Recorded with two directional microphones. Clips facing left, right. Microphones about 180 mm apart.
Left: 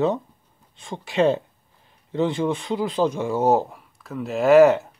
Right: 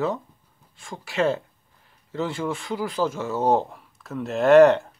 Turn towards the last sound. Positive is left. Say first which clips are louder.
# even
turn(degrees=5)  # may be behind; listen again after turning